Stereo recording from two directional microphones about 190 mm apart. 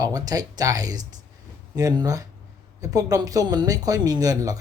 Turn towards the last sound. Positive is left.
turn(degrees=-20)  # may be behind; listen again after turning